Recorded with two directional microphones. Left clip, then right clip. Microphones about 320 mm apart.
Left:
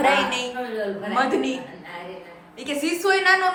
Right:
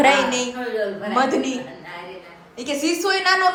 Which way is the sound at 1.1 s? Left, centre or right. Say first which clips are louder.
Right 2 dB; centre.